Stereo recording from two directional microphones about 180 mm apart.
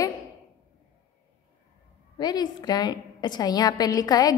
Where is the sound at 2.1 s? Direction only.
25° left (ahead or behind).